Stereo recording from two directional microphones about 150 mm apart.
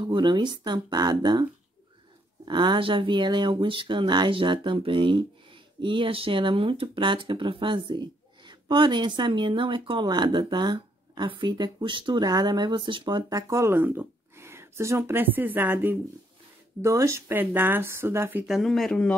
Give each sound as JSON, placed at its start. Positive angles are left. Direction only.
{"t": 0.1, "sound": "speech", "side_deg": -30}
{"t": 18.5, "sound": "speech", "side_deg": 0}